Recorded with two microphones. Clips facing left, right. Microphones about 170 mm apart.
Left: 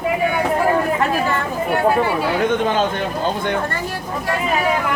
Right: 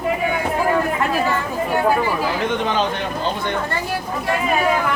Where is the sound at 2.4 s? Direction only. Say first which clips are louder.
Left 3 dB; 50° left (ahead or behind).